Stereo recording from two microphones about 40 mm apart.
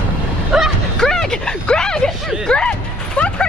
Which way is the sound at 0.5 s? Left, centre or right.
Centre.